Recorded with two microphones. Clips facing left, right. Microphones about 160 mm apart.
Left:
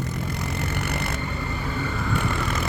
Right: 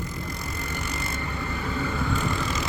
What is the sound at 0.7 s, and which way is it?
Vehicle, 65° left (ahead or behind).